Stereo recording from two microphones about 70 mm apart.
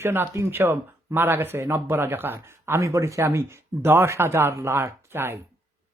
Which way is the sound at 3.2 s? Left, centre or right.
Right.